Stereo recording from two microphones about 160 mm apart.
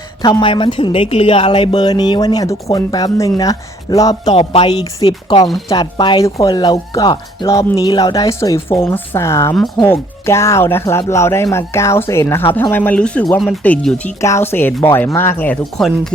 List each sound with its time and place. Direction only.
0.2 s speech: 25° left (ahead or behind)
15.8 s speech: centre (ahead or behind)